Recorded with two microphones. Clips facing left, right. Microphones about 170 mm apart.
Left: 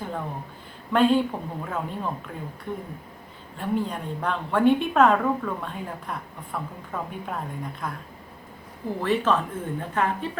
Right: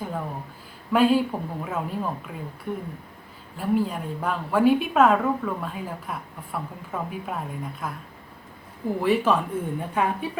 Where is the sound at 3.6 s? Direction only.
5° right (ahead or behind).